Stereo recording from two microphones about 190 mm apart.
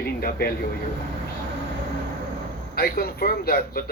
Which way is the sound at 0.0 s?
55° left (ahead or behind).